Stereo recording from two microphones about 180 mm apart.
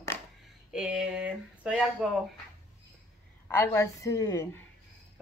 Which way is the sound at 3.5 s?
15° left (ahead or behind).